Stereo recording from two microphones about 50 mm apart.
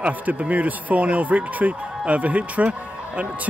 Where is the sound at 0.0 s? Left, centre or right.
Right.